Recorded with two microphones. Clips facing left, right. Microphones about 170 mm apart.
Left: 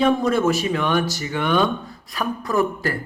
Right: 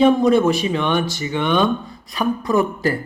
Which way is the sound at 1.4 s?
5° left (ahead or behind).